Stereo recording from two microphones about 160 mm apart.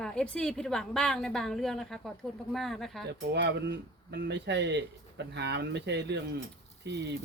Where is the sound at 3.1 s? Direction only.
90° right.